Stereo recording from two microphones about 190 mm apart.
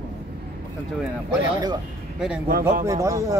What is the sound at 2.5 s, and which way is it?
Speech, 50° right (ahead or behind).